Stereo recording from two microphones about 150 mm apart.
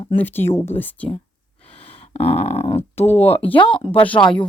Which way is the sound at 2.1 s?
40° left (ahead or behind).